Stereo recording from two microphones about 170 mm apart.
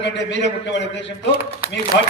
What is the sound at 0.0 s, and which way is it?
A man's voice, 90° left.